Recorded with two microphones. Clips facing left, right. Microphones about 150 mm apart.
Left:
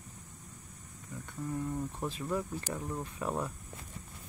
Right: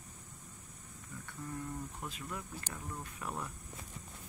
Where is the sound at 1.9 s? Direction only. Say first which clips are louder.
Left 9 dB; 30° left (ahead or behind).